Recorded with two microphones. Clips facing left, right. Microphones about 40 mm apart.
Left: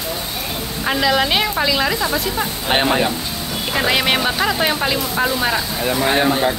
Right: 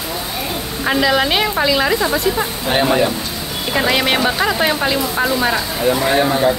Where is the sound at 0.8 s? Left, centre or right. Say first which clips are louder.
Right 2 dB; centre.